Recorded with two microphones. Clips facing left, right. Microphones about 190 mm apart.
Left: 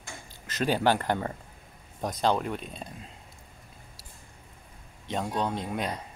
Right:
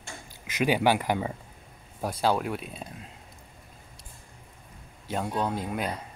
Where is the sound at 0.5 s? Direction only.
15° right (ahead or behind).